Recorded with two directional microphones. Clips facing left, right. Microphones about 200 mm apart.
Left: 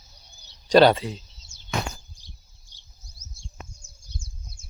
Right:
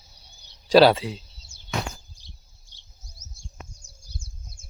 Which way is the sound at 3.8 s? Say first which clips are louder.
Right 1 dB; 35° right (ahead or behind).